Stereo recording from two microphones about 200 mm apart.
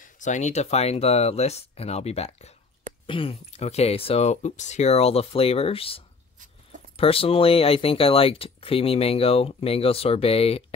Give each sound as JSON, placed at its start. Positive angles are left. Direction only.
{"t": 0.0, "sound": "speech", "side_deg": 40}